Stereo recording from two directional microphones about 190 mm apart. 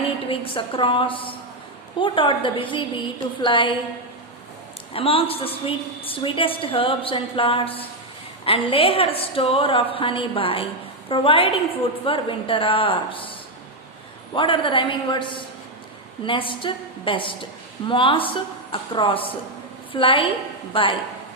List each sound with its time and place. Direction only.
0.3 s a woman's voice: 30° left (ahead or behind)
4.9 s a woman's voice: 30° left (ahead or behind)
14.3 s a woman's voice: 25° left (ahead or behind)